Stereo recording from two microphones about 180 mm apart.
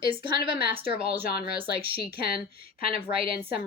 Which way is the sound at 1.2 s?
60° left (ahead or behind).